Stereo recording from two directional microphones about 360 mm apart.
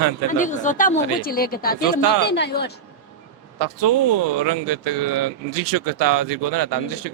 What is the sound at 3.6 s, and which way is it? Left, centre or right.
Speech, right.